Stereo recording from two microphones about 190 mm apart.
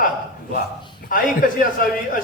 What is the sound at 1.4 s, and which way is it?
Speech, 45° left (ahead or behind).